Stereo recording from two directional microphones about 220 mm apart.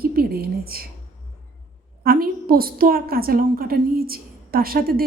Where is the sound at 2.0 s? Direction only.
45° right (ahead or behind).